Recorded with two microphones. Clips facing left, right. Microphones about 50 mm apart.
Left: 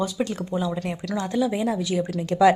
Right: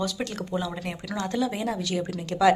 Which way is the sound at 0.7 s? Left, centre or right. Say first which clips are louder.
Left 5 dB; centre.